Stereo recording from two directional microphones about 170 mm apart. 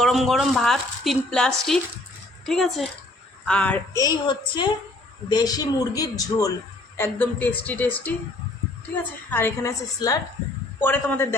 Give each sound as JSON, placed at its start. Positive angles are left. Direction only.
{"t": 0.0, "sound": "a woman's voice", "side_deg": 0}
{"t": 3.9, "sound": "a man's voice", "side_deg": 25}
{"t": 9.3, "sound": "a man's voice", "side_deg": 15}